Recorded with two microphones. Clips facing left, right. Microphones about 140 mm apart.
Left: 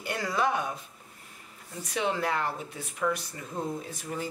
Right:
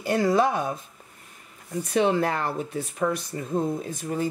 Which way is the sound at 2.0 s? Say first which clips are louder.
Right 6 dB; 45° right (ahead or behind).